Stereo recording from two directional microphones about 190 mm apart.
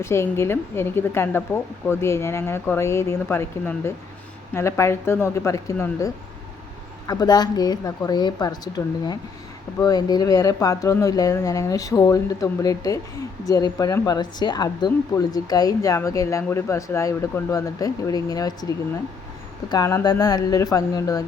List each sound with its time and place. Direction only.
0.0 s speech: 15° left (ahead or behind)
7.1 s speech: 20° left (ahead or behind)
19.7 s speech: 15° left (ahead or behind)